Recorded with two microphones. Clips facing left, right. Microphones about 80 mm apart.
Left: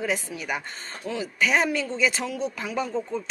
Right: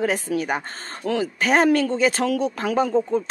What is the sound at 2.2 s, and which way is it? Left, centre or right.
Speech, right.